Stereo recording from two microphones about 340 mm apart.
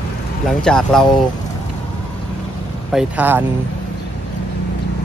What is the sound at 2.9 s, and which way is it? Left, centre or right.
Speech, centre.